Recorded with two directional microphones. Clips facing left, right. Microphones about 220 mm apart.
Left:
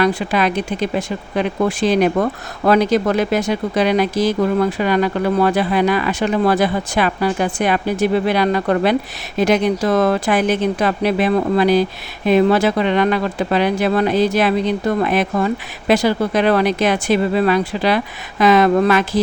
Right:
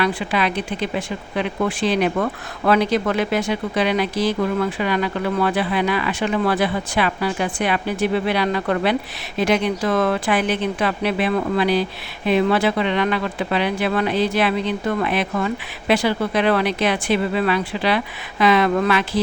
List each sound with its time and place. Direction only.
0.0 s speech: 40° left (ahead or behind)